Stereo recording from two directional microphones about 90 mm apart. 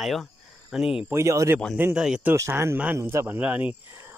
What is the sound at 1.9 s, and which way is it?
Speech, 10° right (ahead or behind).